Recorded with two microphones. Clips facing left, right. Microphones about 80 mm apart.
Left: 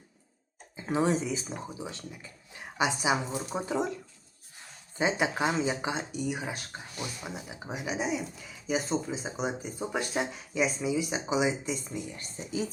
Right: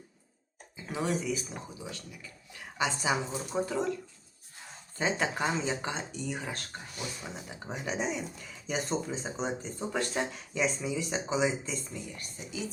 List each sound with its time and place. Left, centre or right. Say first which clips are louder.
0.8 s speech: left 5 dB; left
4.9 s speech: left 2 dB; centre
12.1 s speech: left 5 dB; left